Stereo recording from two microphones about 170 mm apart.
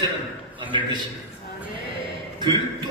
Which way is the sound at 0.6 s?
30° right (ahead or behind).